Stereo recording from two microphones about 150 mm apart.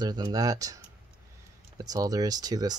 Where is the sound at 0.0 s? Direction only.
25° right (ahead or behind).